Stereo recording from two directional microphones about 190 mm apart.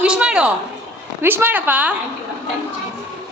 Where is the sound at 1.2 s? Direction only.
10° right (ahead or behind).